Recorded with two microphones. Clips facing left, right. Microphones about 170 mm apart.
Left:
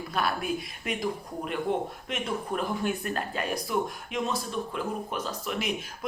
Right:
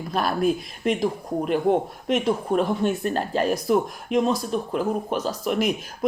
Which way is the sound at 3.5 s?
45° right (ahead or behind).